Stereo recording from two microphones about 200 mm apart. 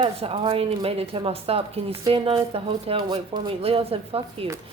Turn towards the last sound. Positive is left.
turn(degrees=-30)  # may be behind; listen again after turning